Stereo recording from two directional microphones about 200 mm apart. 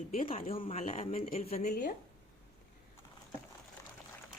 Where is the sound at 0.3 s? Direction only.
30° left (ahead or behind).